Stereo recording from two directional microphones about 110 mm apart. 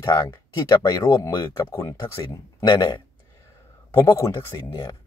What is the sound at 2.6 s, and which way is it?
Speech, 40° left (ahead or behind).